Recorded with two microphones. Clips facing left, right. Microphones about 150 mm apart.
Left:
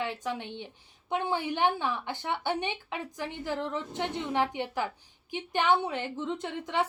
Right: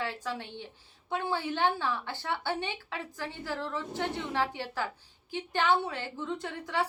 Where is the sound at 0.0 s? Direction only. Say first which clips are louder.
Left 2 dB; 20° left (ahead or behind).